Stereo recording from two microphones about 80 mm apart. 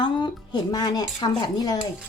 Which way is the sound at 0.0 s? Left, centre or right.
Left.